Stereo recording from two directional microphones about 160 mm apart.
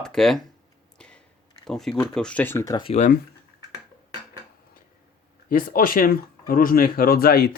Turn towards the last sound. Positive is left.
turn(degrees=70)  # may be behind; listen again after turning